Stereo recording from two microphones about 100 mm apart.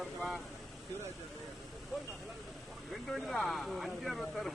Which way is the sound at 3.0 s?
Centre (ahead or behind).